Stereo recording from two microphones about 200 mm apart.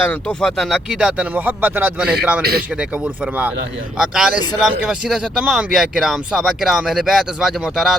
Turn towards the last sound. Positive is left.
turn(degrees=-5)  # may be behind; listen again after turning